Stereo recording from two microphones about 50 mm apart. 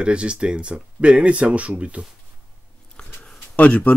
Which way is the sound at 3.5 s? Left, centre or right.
Left.